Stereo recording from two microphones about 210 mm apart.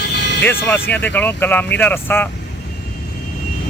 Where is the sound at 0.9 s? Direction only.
10° left (ahead or behind).